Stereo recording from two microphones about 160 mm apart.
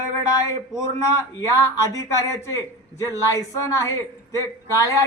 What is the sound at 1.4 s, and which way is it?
Speech, 20° left (ahead or behind).